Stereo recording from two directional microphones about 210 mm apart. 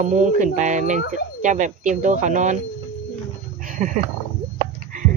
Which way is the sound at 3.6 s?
40° right (ahead or behind).